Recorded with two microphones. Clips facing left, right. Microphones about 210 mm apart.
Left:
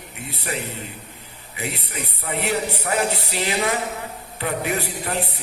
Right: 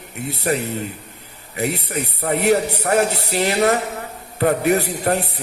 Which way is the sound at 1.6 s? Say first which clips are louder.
Right 8 dB; 45° right (ahead or behind).